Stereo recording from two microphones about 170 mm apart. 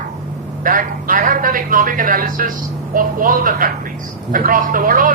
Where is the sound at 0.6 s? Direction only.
55° right (ahead or behind).